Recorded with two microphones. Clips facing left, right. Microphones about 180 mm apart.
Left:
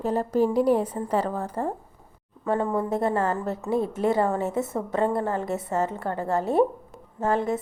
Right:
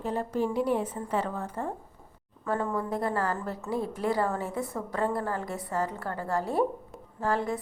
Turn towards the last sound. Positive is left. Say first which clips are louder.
# left 4 dB
turn(degrees=20)  # may be behind; listen again after turning